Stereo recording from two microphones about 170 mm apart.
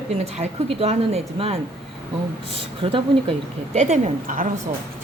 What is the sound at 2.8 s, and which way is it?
Speech, 35° right (ahead or behind).